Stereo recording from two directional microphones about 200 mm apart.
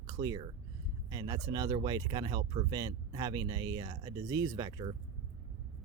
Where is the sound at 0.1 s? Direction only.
20° right (ahead or behind).